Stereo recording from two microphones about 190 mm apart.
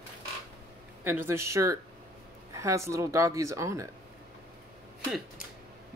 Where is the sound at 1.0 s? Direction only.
10° right (ahead or behind).